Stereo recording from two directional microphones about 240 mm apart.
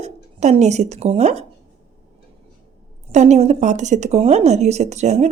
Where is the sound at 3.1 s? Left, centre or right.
Right.